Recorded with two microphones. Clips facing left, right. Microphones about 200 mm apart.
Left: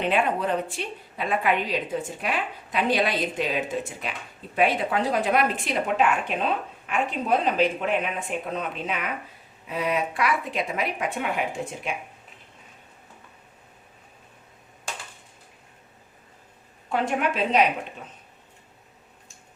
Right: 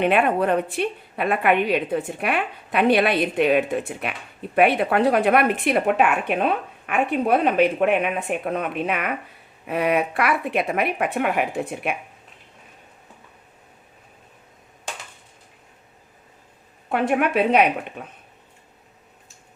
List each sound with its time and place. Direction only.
0.0 s speech: 60° right (ahead or behind)
16.9 s speech: 60° right (ahead or behind)